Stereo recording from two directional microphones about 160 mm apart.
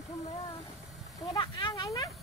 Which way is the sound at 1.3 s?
30° left (ahead or behind).